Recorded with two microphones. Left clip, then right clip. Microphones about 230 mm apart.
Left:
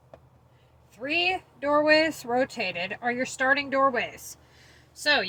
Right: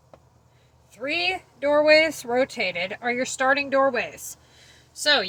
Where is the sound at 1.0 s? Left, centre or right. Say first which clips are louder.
Right 1 dB; right.